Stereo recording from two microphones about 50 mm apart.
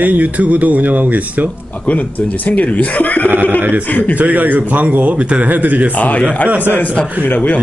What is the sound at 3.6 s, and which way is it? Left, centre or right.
Speech, right.